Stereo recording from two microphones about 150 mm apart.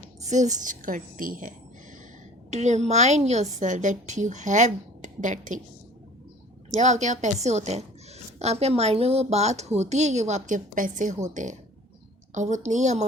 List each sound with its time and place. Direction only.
0.2 s a woman's voice: 50° right (ahead or behind)
2.5 s a woman's voice: 50° right (ahead or behind)
6.7 s a woman's voice: 50° right (ahead or behind)